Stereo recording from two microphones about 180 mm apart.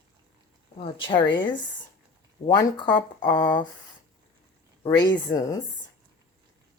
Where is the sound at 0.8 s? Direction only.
30° left (ahead or behind).